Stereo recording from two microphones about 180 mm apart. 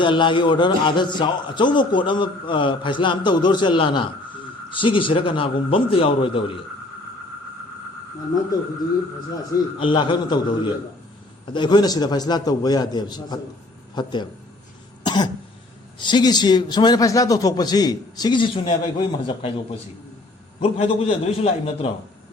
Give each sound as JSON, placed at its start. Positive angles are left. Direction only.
{"t": 0.0, "sound": "a man's voice", "side_deg": 25}
{"t": 9.8, "sound": "a man's voice", "side_deg": 25}
{"t": 15.0, "sound": "cough", "side_deg": 25}
{"t": 16.0, "sound": "a man's voice", "side_deg": 25}
{"t": 20.6, "sound": "a man's voice", "side_deg": 30}